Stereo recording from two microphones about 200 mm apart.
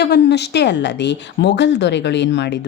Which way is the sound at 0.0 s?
55° left (ahead or behind).